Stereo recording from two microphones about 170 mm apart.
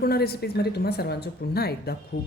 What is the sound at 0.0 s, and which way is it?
A woman's voice, 65° left (ahead or behind).